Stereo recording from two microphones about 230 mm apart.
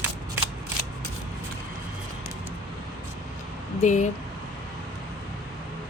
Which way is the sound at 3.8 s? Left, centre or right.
Left.